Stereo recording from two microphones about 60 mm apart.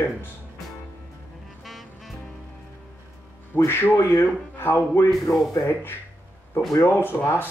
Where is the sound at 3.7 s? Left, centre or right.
Left.